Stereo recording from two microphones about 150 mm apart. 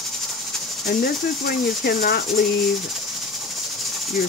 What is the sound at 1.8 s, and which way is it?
Speech, 85° left.